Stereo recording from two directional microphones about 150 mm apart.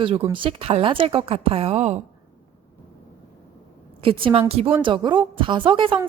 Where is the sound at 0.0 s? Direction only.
35° right (ahead or behind).